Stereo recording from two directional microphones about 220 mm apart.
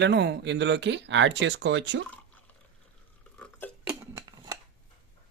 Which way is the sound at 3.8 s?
15° right (ahead or behind).